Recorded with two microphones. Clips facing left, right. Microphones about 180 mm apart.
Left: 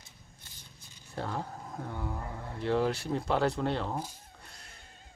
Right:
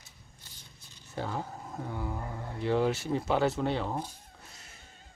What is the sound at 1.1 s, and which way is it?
Speech, centre (ahead or behind).